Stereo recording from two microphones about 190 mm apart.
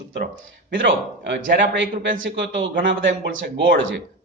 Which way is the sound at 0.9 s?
75° right (ahead or behind).